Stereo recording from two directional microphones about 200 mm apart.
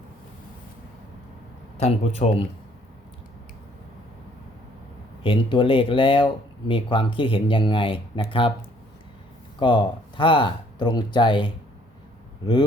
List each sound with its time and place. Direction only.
1.8 s a man's voice: 30° left (ahead or behind)
5.2 s speech: 25° left (ahead or behind)
9.6 s speech: 25° left (ahead or behind)